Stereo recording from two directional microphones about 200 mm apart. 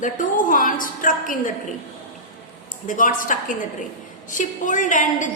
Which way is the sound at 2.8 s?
40° left (ahead or behind).